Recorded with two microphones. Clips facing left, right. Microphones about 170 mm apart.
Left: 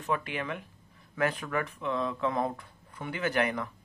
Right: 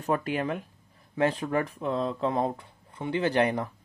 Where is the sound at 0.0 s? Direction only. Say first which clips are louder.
Right 5 dB; 40° right (ahead or behind).